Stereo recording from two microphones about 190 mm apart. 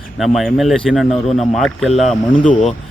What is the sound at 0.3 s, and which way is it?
A man's voice, centre (ahead or behind).